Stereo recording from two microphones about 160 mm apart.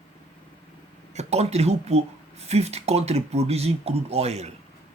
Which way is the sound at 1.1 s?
40° right (ahead or behind).